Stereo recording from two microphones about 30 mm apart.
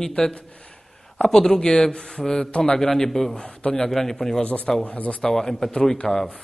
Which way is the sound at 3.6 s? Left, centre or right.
Left.